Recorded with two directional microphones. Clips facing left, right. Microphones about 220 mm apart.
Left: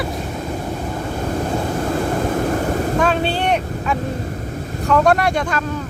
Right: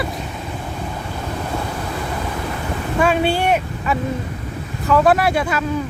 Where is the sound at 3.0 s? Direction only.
10° right (ahead or behind).